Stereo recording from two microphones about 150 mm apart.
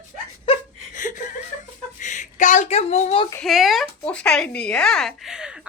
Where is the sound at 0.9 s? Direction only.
60° left (ahead or behind); by 3.3 s 45° left (ahead or behind).